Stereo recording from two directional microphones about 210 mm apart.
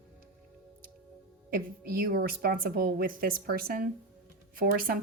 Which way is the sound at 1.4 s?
45° right (ahead or behind).